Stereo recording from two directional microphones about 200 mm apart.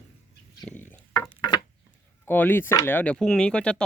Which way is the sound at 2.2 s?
10° left (ahead or behind).